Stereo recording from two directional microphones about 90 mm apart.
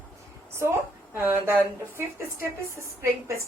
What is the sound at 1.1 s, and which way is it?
Speech, 25° right (ahead or behind).